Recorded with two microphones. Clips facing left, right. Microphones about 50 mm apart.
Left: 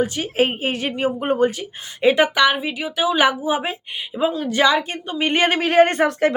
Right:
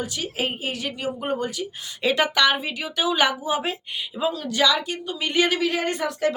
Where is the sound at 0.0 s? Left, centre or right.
Left.